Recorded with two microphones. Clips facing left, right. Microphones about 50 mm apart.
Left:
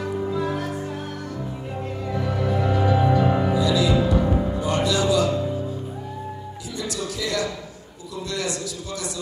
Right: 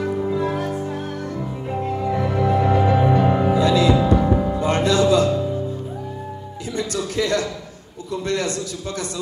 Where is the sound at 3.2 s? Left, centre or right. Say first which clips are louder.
Right 3 dB; centre.